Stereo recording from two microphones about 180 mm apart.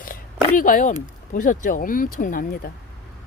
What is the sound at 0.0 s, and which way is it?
Speech, 50° left (ahead or behind).